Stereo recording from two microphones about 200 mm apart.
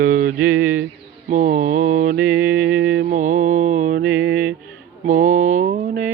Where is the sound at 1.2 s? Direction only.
40° right (ahead or behind).